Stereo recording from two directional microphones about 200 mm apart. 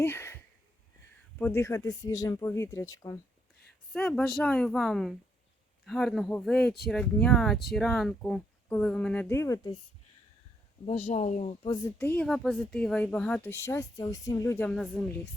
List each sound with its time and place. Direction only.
0.0 s a sound: 10° left (ahead or behind)
1.4 s a woman's voice: 10° left (ahead or behind)
3.9 s speech: 5° left (ahead or behind)
10.8 s speech: 35° left (ahead or behind)
11.9 s a woman's voice: 10° left (ahead or behind)